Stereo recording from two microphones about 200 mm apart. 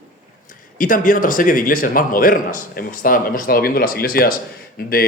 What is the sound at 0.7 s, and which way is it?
A man's voice, 45° left (ahead or behind).